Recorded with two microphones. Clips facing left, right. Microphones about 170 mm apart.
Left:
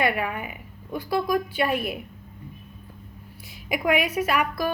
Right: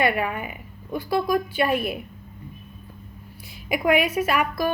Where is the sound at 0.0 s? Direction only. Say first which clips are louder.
Right 2 dB; 30° right (ahead or behind).